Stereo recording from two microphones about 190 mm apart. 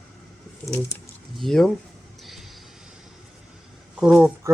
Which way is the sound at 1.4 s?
Centre (ahead or behind).